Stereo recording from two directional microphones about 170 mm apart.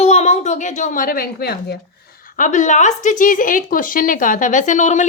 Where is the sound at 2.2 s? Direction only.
50° left (ahead or behind).